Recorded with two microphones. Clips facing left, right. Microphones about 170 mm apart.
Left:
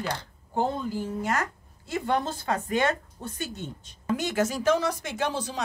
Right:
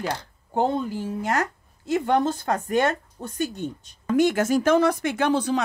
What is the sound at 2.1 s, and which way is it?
A woman's voice, 50° right (ahead or behind).